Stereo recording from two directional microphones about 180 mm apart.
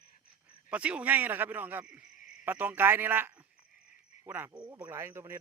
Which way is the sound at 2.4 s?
10° right (ahead or behind).